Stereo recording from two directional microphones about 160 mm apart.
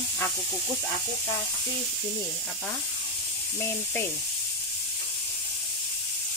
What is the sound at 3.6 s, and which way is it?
Speech, 15° left (ahead or behind).